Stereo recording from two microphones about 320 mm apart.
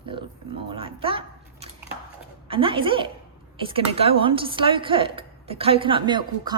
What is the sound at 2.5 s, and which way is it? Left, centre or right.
A woman's voice, centre.